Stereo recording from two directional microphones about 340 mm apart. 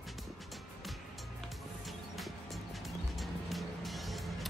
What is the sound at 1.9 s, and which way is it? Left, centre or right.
Music, centre.